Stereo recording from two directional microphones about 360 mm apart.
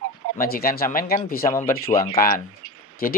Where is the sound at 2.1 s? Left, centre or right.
Left.